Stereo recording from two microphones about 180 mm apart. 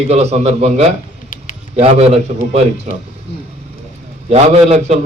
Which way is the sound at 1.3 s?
45° left (ahead or behind).